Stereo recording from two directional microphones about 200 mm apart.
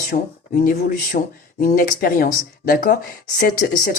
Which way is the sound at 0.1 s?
40° left (ahead or behind).